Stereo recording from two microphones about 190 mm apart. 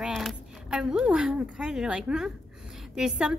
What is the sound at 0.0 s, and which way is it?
A woman's voice, centre (ahead or behind).